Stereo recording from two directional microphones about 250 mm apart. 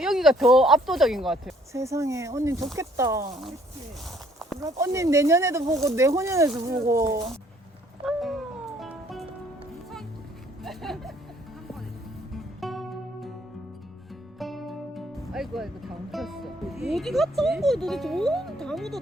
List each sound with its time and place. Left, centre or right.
0.0 s speech: centre
1.7 s speech: centre
4.6 s speech: centre
8.0 s cat: centre
8.8 s music: centre
10.6 s music: centre
12.3 s music: centre
14.3 s music: centre
16.1 s speech: centre